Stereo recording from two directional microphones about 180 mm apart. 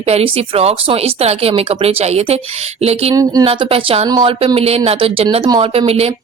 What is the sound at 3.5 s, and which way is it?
A woman's voice, 30° right (ahead or behind).